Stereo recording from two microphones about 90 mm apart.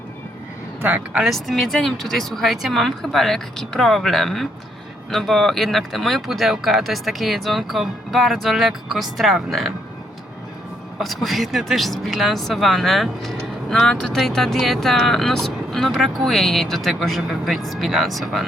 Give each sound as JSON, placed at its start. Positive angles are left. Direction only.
{"t": 0.8, "sound": "speech", "side_deg": -20}
{"t": 1.2, "sound": "speech", "side_deg": 0}
{"t": 10.9, "sound": "speech", "side_deg": 0}